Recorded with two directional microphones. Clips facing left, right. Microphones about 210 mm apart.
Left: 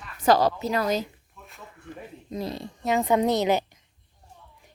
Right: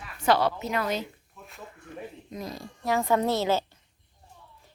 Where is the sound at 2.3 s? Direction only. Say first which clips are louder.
Left 8 dB; 30° left (ahead or behind).